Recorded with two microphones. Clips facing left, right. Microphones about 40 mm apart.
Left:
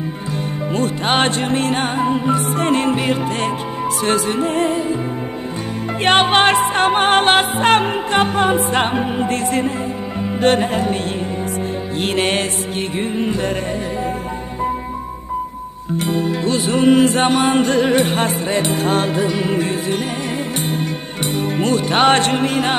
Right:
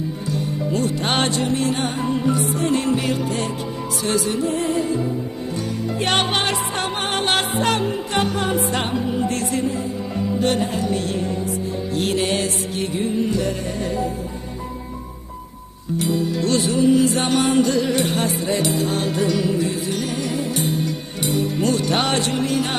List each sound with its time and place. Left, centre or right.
1.2 s music: left
2.0 s music: left
6.0 s music: left
12.0 s music: left
16.0 s music: left
16.3 s music: centre
16.6 s music: left
17.3 s music: left
17.6 s music: left
19.0 s music: left
19.4 s music: left
21.3 s music: left